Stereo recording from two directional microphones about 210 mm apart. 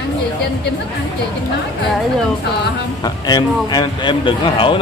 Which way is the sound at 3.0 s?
20° left (ahead or behind).